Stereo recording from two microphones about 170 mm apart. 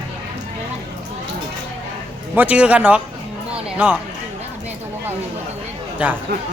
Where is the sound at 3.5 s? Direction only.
10° right (ahead or behind).